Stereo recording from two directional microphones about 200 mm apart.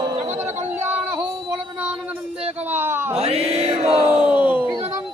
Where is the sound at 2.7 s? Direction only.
10° right (ahead or behind).